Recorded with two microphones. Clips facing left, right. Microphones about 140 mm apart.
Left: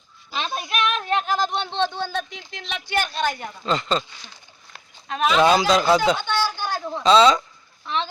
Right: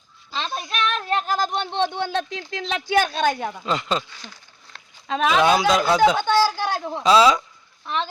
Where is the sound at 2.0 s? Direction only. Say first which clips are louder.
Right 3 dB; 75° right (ahead or behind).